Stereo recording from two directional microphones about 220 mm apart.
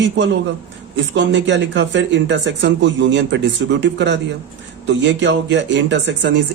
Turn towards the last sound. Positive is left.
turn(degrees=-50)  # may be behind; listen again after turning